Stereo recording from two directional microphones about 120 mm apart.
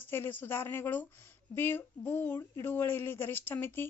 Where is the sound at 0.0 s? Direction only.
20° left (ahead or behind).